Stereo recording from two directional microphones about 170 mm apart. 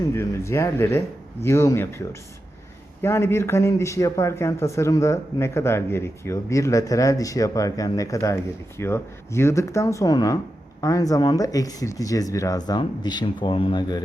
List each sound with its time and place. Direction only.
0.1 s speech: 15° left (ahead or behind)
3.0 s speech: 15° left (ahead or behind)